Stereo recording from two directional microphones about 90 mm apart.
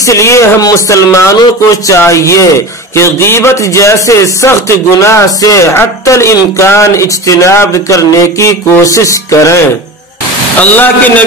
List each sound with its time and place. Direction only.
0.0 s a man's voice: 35° left (ahead or behind)
10.6 s speech: 20° left (ahead or behind)